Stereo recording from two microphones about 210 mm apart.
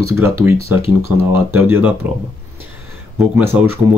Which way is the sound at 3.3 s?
10° right (ahead or behind).